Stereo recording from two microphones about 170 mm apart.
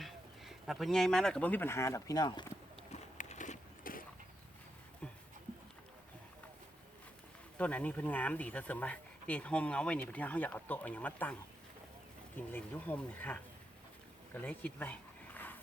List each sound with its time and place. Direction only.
0.0 s speech: centre (ahead or behind); by 2.5 s 25° left (ahead or behind)
2.9 s a sound: 45° left (ahead or behind)
7.6 s speech: 10° left (ahead or behind)
12.4 s speech: 10° left (ahead or behind)